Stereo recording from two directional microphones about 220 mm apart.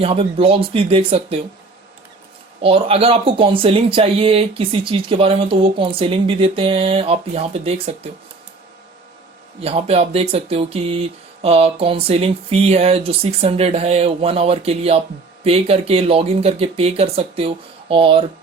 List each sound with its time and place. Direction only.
0.0 s speech: 25° right (ahead or behind)
2.6 s speech: 25° right (ahead or behind)
9.6 s speech: 25° right (ahead or behind)